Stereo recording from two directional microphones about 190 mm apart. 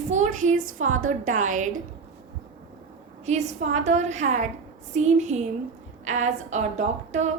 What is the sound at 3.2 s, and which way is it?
A woman's voice, 35° right (ahead or behind).